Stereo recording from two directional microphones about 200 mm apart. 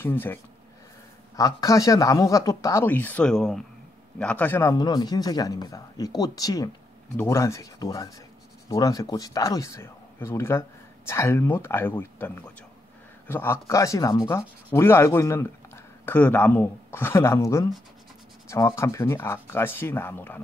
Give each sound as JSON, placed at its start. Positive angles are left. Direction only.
{"t": 0.0, "sound": "a man's voice", "side_deg": 10}